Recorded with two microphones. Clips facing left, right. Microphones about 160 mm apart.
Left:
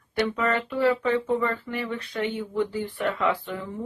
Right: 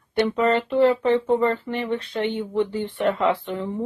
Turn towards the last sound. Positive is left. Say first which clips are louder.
# right 4 dB
turn(degrees=-30)  # may be behind; listen again after turning